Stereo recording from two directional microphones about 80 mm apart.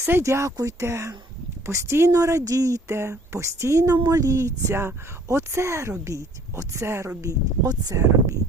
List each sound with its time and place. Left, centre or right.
0.0 s speech: right